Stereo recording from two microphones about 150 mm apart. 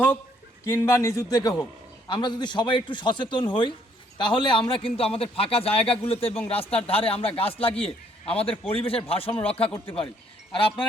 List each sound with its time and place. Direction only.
0.7 s a man's voice: 20° left (ahead or behind); by 10.8 s 35° left (ahead or behind)